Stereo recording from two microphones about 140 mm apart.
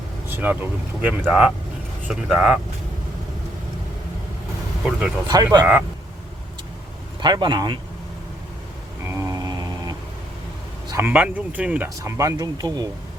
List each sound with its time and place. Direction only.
0.3 s speech: 15° right (ahead or behind)
4.9 s speech: 10° right (ahead or behind)
5.3 s speech: 30° right (ahead or behind)
7.2 s speech: 30° right (ahead or behind)
9.0 s a sound: 25° right (ahead or behind)
10.9 s speech: 15° right (ahead or behind)
11.9 s speech: 20° right (ahead or behind)